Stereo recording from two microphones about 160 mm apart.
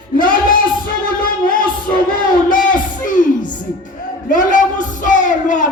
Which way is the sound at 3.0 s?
55° left (ahead or behind).